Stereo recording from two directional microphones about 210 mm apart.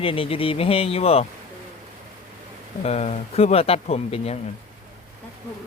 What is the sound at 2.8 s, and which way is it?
Speech, 30° left (ahead or behind).